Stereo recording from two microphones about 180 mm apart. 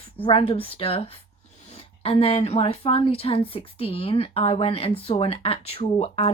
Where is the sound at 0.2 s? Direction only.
30° left (ahead or behind).